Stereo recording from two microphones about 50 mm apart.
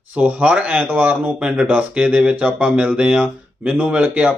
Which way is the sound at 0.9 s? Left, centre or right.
Right.